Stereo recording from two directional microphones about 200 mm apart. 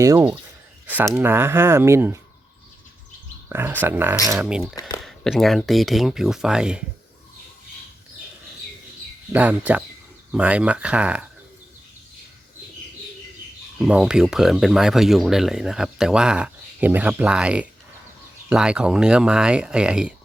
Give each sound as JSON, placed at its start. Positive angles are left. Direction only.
{"t": 0.0, "sound": "speech", "side_deg": -10}
{"t": 3.5, "sound": "speech", "side_deg": -10}
{"t": 4.7, "sound": "speech", "side_deg": 20}
{"t": 4.9, "sound": "speech", "side_deg": 0}
{"t": 9.3, "sound": "speech", "side_deg": -10}
{"t": 13.7, "sound": "speech", "side_deg": -5}